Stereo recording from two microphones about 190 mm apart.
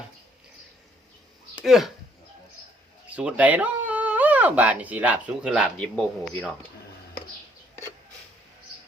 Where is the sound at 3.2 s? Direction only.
5° right (ahead or behind).